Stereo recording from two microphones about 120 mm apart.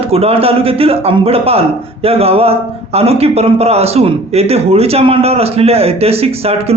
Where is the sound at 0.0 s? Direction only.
55° right (ahead or behind).